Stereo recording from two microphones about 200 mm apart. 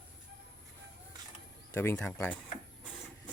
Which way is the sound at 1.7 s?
10° left (ahead or behind).